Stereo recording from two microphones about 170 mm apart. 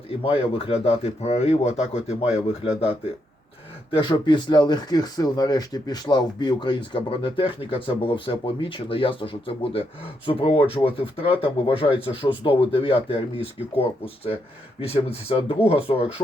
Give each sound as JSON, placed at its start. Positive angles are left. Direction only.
{"t": 0.1, "sound": "speech", "side_deg": 30}
{"t": 3.9, "sound": "speech", "side_deg": 30}